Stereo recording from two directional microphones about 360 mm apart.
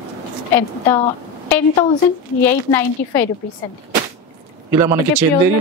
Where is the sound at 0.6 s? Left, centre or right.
Centre.